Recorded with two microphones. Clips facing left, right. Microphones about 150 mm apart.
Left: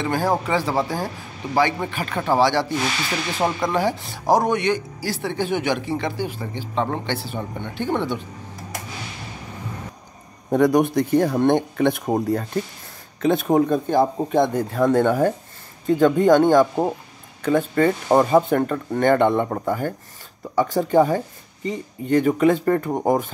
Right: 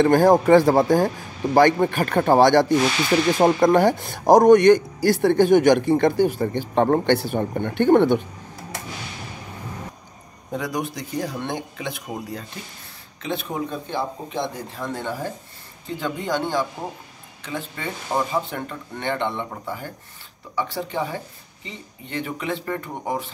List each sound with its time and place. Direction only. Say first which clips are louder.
0.0 s speech: right 7 dB; 50° right (ahead or behind)
10.5 s speech: left 11 dB; 55° left (ahead or behind)